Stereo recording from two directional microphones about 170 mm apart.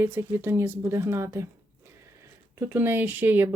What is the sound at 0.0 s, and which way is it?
Speech, 15° right (ahead or behind).